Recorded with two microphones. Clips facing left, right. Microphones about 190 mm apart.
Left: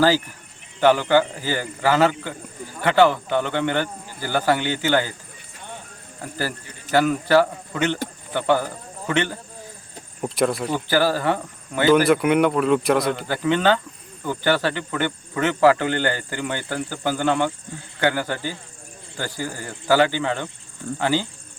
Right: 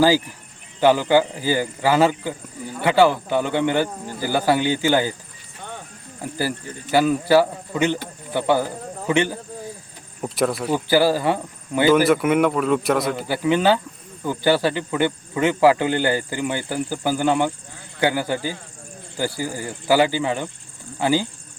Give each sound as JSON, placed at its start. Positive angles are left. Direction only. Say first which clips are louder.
{"t": 0.8, "sound": "speech", "louder": "right 1 dB", "side_deg": -10}
{"t": 6.9, "sound": "speech", "louder": "right 1 dB", "side_deg": -10}
{"t": 10.2, "sound": "speech", "louder": "even", "side_deg": 0}
{"t": 10.7, "sound": "speech", "louder": "right 3 dB", "side_deg": -10}